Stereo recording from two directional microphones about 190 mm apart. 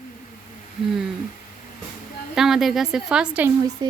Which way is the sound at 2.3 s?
Centre (ahead or behind).